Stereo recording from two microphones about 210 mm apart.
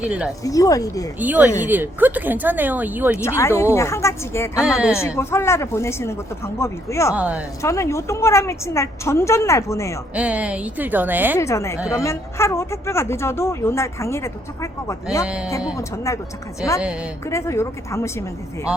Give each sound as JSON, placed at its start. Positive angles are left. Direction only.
{"t": 0.0, "sound": "speech", "side_deg": -5}
{"t": 0.4, "sound": "a woman's voice", "side_deg": 15}
{"t": 1.2, "sound": "speech", "side_deg": -10}
{"t": 3.2, "sound": "a woman's voice", "side_deg": 15}
{"t": 4.6, "sound": "speech", "side_deg": -5}
{"t": 4.9, "sound": "a woman's voice", "side_deg": 15}
{"t": 7.2, "sound": "speech", "side_deg": -5}
{"t": 7.6, "sound": "a woman's voice", "side_deg": 15}
{"t": 10.2, "sound": "speech", "side_deg": -5}
{"t": 11.3, "sound": "a woman's voice", "side_deg": 15}
{"t": 15.2, "sound": "speech", "side_deg": -5}
{"t": 15.7, "sound": "a woman's voice", "side_deg": 15}
{"t": 16.6, "sound": "speech", "side_deg": -5}
{"t": 17.2, "sound": "a woman's voice", "side_deg": 15}